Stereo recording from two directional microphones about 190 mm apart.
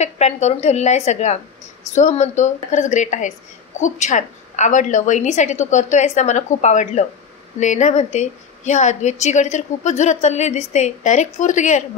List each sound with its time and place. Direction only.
0.0 s a woman's voice: 35° left (ahead or behind)